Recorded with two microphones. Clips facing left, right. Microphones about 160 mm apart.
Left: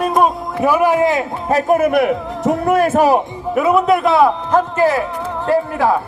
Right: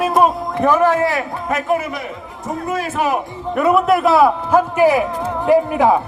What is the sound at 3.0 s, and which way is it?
Speech, 35° left (ahead or behind).